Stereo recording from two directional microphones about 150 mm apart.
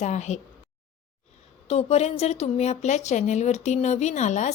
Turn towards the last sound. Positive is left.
turn(degrees=50)  # may be behind; listen again after turning